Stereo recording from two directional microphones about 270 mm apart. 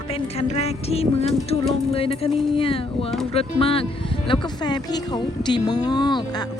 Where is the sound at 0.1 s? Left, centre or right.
Left.